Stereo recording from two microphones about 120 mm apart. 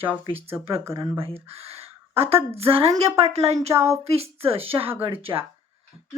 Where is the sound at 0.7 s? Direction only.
25° right (ahead or behind).